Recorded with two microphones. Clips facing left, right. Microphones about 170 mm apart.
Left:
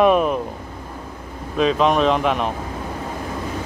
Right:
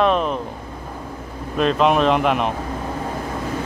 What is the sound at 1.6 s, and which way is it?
Speech, centre (ahead or behind).